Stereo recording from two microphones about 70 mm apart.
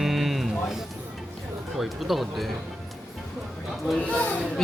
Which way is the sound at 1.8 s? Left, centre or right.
Centre.